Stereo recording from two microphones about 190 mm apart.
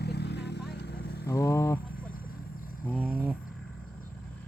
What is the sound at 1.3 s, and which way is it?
Speech, 15° left (ahead or behind).